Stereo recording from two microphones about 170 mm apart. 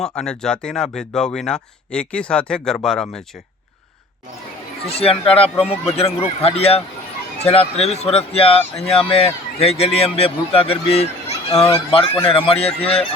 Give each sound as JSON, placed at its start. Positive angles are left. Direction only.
{"t": 0.0, "sound": "speech", "side_deg": 5}
{"t": 4.9, "sound": "speech", "side_deg": 35}